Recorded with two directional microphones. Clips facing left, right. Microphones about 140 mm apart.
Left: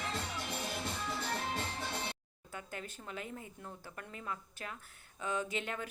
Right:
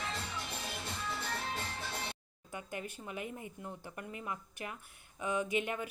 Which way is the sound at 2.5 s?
15° right (ahead or behind).